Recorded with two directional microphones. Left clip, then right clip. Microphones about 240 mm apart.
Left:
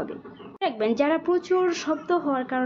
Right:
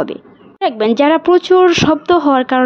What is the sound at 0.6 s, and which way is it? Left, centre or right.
A woman's voice, right.